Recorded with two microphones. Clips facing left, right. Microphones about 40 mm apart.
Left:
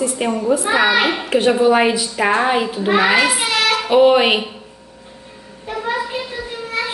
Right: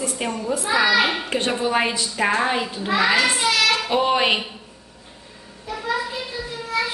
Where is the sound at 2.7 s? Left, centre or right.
Left.